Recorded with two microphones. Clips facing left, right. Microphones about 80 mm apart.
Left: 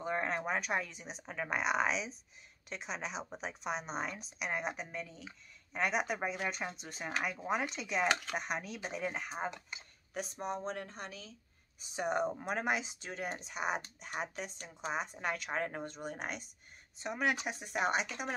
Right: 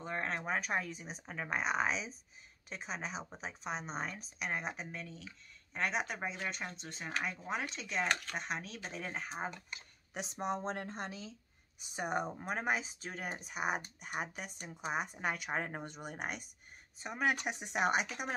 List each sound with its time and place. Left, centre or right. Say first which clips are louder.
0.0 s a sound: left 3 dB; centre
0.5 s a woman's voice: left 1 dB; centre
10.1 s speech: right 1 dB; centre
11.9 s a woman's voice: left 3 dB; centre